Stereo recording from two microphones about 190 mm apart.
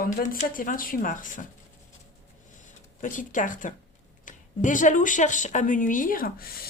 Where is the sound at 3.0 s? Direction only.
45° left (ahead or behind).